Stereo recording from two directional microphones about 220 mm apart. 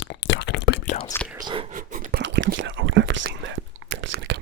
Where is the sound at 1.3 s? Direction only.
20° right (ahead or behind).